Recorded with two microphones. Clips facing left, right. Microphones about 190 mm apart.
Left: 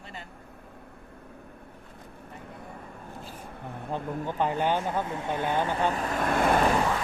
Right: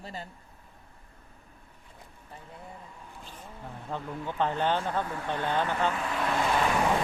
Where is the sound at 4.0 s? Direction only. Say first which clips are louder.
Left 4 dB; 50° left (ahead or behind).